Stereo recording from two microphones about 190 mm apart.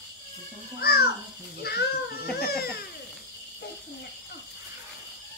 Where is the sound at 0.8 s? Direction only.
50° left (ahead or behind).